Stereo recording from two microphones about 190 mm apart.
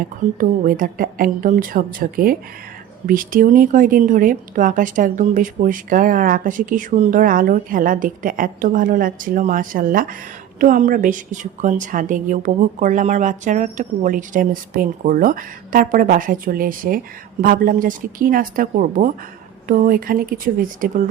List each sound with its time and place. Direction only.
0.3 s a woman's voice: 45° right (ahead or behind)